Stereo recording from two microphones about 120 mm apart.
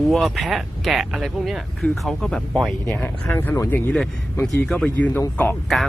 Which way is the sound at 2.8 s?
20° left (ahead or behind).